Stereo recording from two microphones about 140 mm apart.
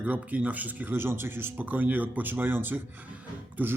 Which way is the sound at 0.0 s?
10° right (ahead or behind).